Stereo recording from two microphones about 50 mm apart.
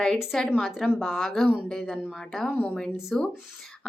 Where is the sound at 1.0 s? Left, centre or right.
Centre.